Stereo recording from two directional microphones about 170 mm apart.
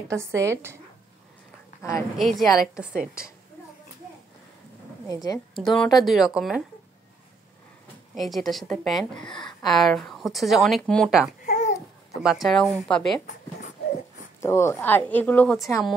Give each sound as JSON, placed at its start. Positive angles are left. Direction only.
{"t": 0.4, "sound": "speech", "side_deg": -15}
{"t": 1.8, "sound": "a woman's voice", "side_deg": 20}
{"t": 2.3, "sound": "speech", "side_deg": 0}
{"t": 5.0, "sound": "a woman's voice", "side_deg": 20}
{"t": 5.5, "sound": "speech", "side_deg": 5}
{"t": 8.1, "sound": "speech", "side_deg": 0}
{"t": 9.3, "sound": "speech", "side_deg": 25}
{"t": 9.7, "sound": "speech", "side_deg": 0}
{"t": 11.4, "sound": "babbling", "side_deg": 45}
{"t": 12.2, "sound": "speech", "side_deg": 0}
{"t": 14.4, "sound": "a woman's voice", "side_deg": 15}